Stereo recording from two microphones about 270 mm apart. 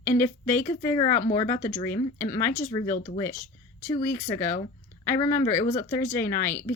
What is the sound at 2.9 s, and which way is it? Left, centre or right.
Speech, left.